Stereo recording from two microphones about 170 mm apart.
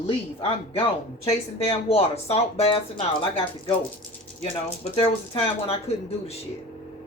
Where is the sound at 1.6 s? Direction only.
35° left (ahead or behind).